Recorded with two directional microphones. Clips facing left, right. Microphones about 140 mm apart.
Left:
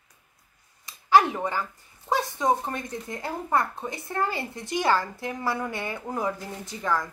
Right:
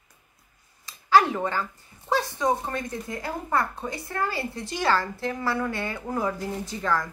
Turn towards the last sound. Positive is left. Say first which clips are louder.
# right 1 dB
turn(degrees=15)  # may be behind; listen again after turning